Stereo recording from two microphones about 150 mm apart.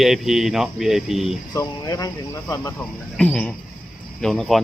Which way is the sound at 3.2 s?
10° left (ahead or behind).